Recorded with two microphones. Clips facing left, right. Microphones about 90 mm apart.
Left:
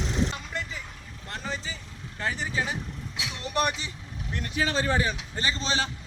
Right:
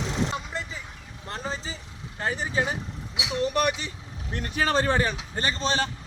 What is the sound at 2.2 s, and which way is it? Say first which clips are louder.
Speech: right 3 dB; 35° right (ahead or behind).